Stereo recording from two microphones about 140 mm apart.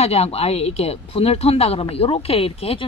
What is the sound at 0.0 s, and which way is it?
Speech, 45° left (ahead or behind).